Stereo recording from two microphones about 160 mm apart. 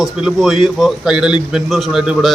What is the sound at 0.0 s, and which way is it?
A man's voice, 5° right (ahead or behind).